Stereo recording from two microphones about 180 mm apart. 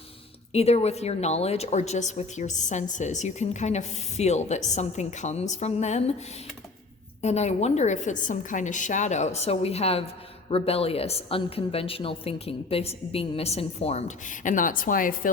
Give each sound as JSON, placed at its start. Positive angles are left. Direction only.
{"t": 0.5, "sound": "a woman's voice", "side_deg": 35}
{"t": 7.2, "sound": "a woman's voice", "side_deg": 40}